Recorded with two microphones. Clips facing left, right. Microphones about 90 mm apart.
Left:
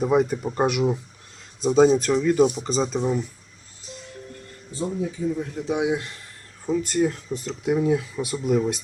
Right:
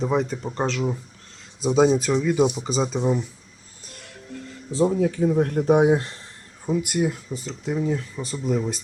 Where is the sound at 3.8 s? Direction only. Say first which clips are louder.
Left 4 dB; 60° right (ahead or behind); by 6.3 s 35° right (ahead or behind).